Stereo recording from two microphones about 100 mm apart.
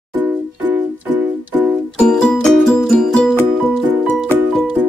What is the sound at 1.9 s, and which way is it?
Music, 10° left (ahead or behind).